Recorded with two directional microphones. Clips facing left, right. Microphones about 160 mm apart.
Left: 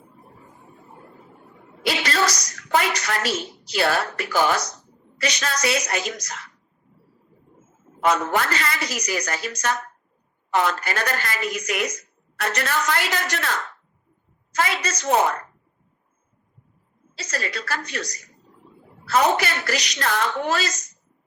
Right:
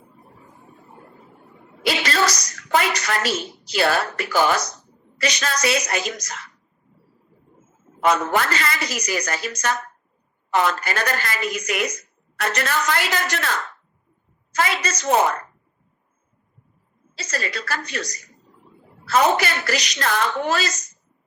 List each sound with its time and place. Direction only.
1.8 s a woman's voice: 90° right
8.0 s a woman's voice: 90° right
17.2 s a woman's voice: 90° right